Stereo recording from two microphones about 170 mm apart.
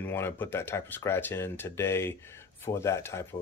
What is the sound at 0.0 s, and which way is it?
Speech, 10° left (ahead or behind).